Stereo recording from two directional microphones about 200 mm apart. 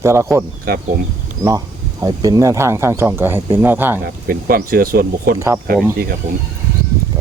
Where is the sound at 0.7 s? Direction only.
50° right (ahead or behind).